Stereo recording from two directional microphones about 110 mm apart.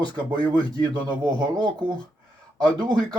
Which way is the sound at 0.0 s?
40° right (ahead or behind).